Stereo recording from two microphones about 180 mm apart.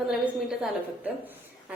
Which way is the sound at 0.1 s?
5° right (ahead or behind).